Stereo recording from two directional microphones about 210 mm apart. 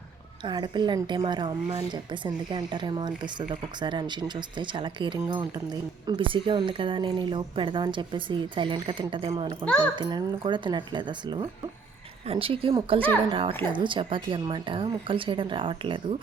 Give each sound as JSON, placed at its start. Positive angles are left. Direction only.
{"t": 0.4, "sound": "a woman's voice", "side_deg": -20}
{"t": 9.6, "sound": "a child's voice", "side_deg": 5}
{"t": 9.9, "sound": "a woman's voice", "side_deg": -20}